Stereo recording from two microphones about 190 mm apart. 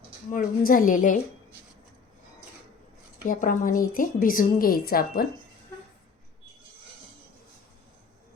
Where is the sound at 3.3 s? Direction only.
45° left (ahead or behind).